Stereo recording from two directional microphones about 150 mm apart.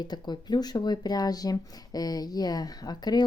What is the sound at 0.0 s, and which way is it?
Speech, 30° left (ahead or behind).